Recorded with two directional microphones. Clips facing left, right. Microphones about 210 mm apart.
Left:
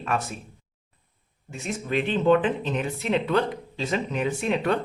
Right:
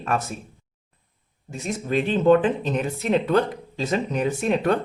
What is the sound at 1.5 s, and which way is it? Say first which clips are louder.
Speech: right 3 dB; 40° right (ahead or behind).